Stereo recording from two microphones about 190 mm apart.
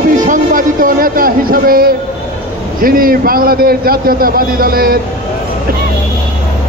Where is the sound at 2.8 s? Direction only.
50° right (ahead or behind).